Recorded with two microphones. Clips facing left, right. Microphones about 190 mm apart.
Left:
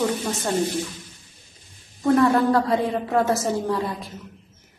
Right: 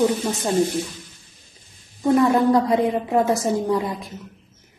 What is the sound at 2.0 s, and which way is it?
A woman's voice, 15° right (ahead or behind).